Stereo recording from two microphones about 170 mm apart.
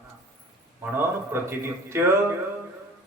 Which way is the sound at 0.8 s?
10° right (ahead or behind).